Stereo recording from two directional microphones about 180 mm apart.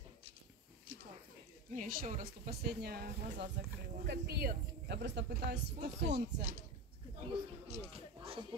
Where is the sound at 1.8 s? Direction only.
45° right (ahead or behind); by 6.4 s 70° right (ahead or behind).